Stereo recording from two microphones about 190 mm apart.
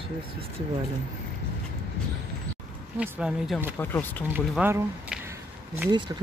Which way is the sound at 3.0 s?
5° right (ahead or behind).